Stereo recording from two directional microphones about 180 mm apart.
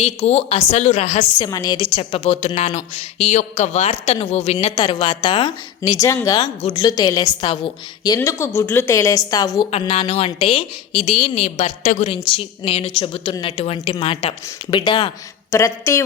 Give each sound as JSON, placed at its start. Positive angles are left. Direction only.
{"t": 0.0, "sound": "a woman's voice", "side_deg": 35}
{"t": 1.4, "sound": "a woman's voice", "side_deg": 20}
{"t": 4.6, "sound": "a woman's voice", "side_deg": 25}
{"t": 9.7, "sound": "a woman's voice", "side_deg": 35}
{"t": 15.5, "sound": "a woman's voice", "side_deg": 15}